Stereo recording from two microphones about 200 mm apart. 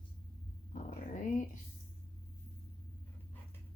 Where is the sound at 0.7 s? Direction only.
40° left (ahead or behind).